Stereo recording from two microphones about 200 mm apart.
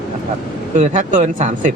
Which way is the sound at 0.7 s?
35° right (ahead or behind).